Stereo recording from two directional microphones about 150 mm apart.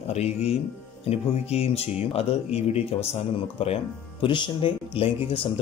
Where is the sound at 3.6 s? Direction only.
40° left (ahead or behind).